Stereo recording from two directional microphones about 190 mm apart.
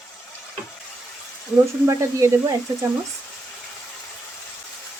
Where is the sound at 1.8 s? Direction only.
15° right (ahead or behind).